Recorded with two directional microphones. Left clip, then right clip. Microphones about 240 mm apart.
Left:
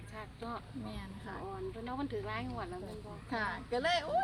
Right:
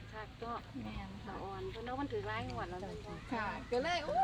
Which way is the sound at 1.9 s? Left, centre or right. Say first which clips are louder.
Even; left.